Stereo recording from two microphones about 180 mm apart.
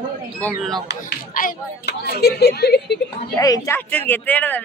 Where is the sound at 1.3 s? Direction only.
50° left (ahead or behind).